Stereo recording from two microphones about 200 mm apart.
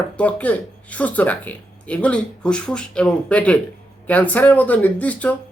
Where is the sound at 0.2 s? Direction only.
5° left (ahead or behind).